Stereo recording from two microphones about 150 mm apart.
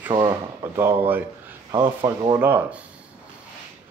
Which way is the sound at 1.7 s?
30° right (ahead or behind).